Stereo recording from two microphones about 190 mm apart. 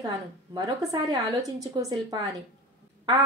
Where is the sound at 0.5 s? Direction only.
20° right (ahead or behind).